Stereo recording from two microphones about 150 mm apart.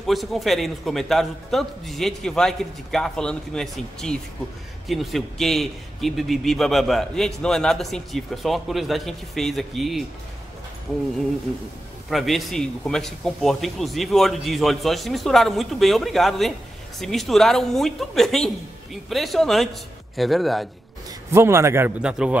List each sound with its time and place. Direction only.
0.0 s a man's voice: centre (ahead or behind)
12.1 s a man's voice: centre (ahead or behind)
21.3 s a man's voice: 20° right (ahead or behind)
22.0 s a man's voice: 5° right (ahead or behind)